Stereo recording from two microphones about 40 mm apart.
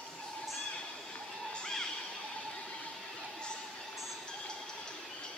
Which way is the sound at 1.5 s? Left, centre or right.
Centre.